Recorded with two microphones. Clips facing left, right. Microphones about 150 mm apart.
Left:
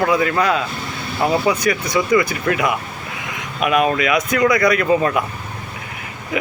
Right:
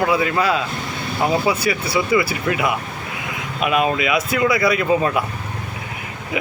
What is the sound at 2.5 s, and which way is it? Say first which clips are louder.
Speech: left 1 dB; 25° right (ahead or behind).